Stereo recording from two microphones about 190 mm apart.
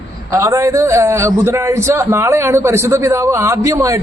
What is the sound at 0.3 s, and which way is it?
A man's voice, 15° right (ahead or behind).